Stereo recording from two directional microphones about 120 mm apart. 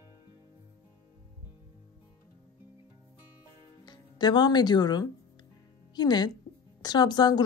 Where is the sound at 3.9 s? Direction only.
35° left (ahead or behind).